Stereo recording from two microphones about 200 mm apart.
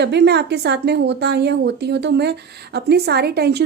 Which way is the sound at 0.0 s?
60° right (ahead or behind).